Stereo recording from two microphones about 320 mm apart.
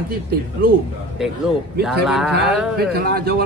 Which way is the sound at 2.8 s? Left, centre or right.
Right.